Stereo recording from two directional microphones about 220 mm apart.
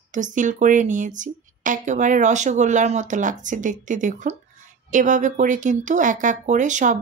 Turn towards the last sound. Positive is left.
turn(degrees=-35)  # may be behind; listen again after turning